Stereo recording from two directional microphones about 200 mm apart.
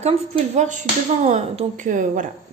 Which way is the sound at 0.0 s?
35° right (ahead or behind).